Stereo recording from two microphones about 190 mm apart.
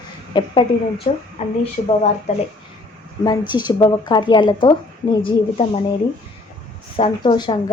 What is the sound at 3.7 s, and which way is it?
Speech, 20° left (ahead or behind).